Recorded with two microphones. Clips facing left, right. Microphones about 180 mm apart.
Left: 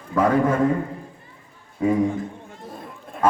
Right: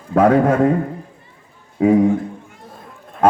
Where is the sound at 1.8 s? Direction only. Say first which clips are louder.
Right 7 dB; 70° right (ahead or behind).